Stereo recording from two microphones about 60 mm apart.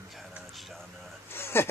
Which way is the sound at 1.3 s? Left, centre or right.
Left.